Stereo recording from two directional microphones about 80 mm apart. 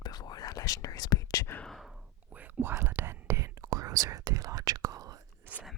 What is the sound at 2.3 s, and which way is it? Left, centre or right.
Whispering, right.